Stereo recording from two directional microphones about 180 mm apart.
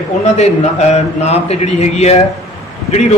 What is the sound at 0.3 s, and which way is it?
A man's voice, 40° left (ahead or behind).